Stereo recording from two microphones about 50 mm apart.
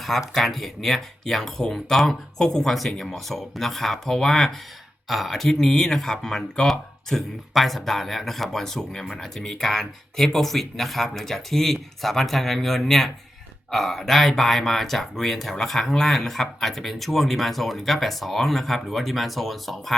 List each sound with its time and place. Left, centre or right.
0.3 s speech: centre